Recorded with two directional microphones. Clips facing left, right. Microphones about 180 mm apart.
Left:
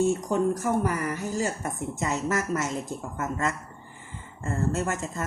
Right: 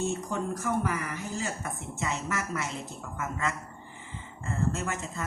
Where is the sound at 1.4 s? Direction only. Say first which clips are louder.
Left 6 dB; 40° left (ahead or behind).